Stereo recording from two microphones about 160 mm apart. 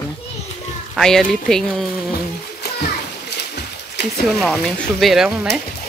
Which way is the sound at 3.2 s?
90° left.